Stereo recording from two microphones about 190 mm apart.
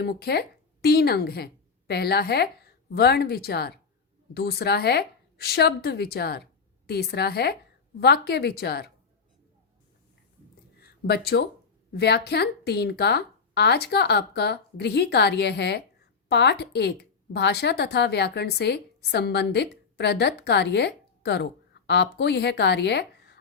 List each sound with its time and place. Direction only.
0.0 s a woman's voice: 55° left (ahead or behind)
10.8 s a sound: 55° left (ahead or behind)
11.9 s a woman's voice: 60° left (ahead or behind)